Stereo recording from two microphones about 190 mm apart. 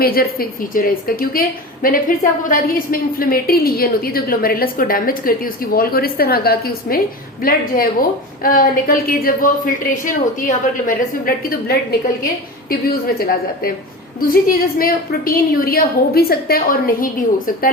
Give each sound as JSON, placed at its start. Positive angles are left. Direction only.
{"t": 0.0, "sound": "a woman's voice", "side_deg": 50}
{"t": 13.1, "sound": "a woman's voice", "side_deg": 50}